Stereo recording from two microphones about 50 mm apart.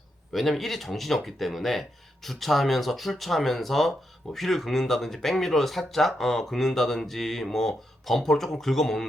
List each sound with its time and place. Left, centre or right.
0.3 s speech: centre